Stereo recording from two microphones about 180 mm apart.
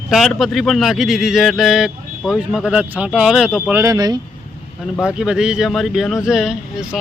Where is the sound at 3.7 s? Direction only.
15° right (ahead or behind).